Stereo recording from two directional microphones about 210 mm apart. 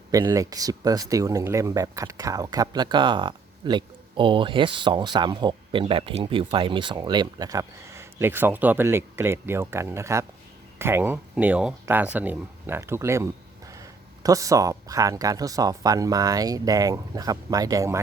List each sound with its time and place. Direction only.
0.1 s speech: 15° right (ahead or behind)